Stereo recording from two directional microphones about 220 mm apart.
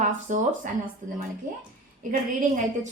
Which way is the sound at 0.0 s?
35° right (ahead or behind).